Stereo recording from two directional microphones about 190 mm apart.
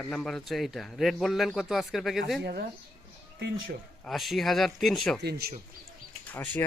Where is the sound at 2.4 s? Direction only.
55° right (ahead or behind).